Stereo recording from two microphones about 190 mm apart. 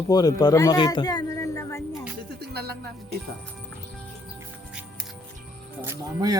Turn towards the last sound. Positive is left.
turn(degrees=-10)  # may be behind; listen again after turning